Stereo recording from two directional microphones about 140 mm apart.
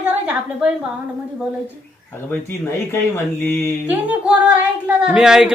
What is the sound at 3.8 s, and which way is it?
A man's voice, 10° right (ahead or behind).